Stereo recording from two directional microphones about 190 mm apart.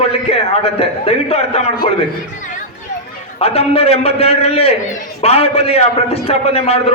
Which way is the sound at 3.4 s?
30° left (ahead or behind).